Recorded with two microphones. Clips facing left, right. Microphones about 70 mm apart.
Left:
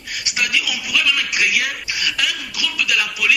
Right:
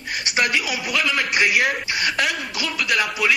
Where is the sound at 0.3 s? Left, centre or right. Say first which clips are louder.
Right 1 dB; right.